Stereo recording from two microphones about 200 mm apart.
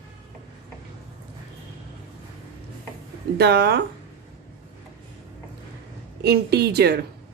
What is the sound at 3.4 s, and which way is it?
Speech, 55° right (ahead or behind).